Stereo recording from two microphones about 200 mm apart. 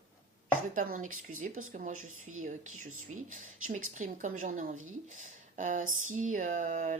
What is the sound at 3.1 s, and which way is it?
Speech, 40° right (ahead or behind).